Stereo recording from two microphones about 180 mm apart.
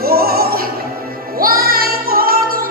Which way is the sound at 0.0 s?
60° right (ahead or behind).